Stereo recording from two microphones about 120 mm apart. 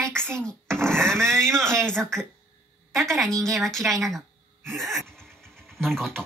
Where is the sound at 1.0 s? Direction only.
5° left (ahead or behind).